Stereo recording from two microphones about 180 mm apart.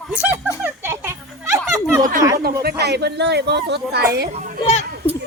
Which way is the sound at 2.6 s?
65° right (ahead or behind).